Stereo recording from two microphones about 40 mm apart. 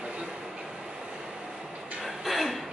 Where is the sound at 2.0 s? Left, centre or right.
Centre.